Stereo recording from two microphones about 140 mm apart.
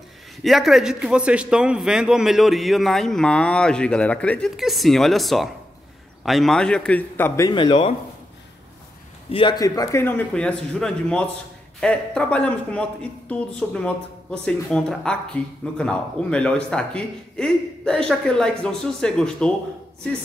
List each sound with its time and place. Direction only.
0.4 s a man's voice: centre (ahead or behind); by 7.4 s 15° left (ahead or behind)
7.4 s speech: 35° left (ahead or behind)
9.3 s a man's voice: 35° left (ahead or behind)
10.0 s speech: 10° left (ahead or behind)